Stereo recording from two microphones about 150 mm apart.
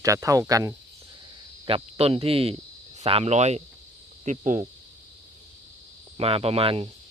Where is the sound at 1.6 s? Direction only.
40° right (ahead or behind).